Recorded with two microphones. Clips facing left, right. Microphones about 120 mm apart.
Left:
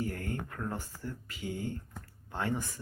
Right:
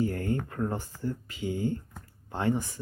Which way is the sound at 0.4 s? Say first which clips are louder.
Right 6 dB; 25° right (ahead or behind).